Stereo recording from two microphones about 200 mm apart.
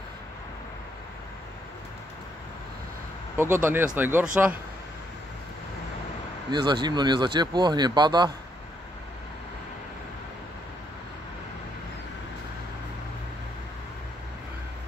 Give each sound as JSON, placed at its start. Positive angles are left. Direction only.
{"t": 3.3, "sound": "speech", "side_deg": -10}
{"t": 6.5, "sound": "speech", "side_deg": -20}